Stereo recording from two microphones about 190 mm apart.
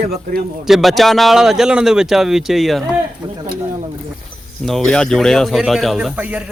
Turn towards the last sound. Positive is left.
turn(degrees=-5)  # may be behind; listen again after turning